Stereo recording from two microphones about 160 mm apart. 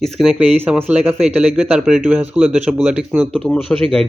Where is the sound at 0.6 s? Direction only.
10° right (ahead or behind).